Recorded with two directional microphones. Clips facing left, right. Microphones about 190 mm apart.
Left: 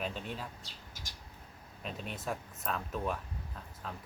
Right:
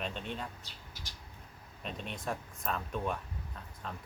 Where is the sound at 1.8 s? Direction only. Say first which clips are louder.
Even; 5° left (ahead or behind).